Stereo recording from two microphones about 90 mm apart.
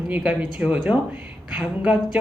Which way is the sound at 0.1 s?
15° right (ahead or behind).